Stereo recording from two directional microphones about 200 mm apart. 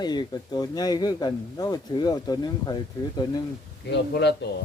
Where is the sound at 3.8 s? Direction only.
60° left (ahead or behind).